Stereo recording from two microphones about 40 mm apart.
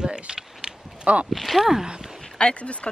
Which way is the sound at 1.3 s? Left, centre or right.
Centre.